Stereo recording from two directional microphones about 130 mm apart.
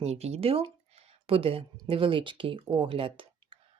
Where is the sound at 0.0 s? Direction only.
55° right (ahead or behind).